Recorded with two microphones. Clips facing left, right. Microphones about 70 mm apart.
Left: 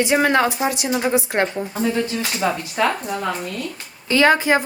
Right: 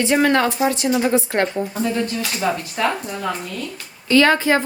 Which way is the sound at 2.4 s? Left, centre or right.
Left.